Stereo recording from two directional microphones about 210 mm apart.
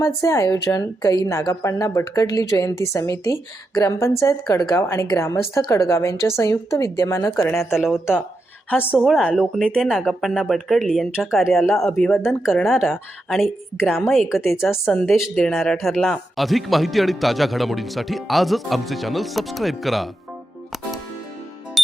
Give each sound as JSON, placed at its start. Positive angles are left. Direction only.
{"t": 0.0, "sound": "a woman's voice", "side_deg": 15}
{"t": 7.5, "sound": "speech", "side_deg": 0}
{"t": 14.6, "sound": "speech", "side_deg": 0}